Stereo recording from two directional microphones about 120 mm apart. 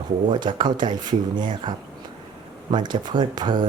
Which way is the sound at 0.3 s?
40° right (ahead or behind).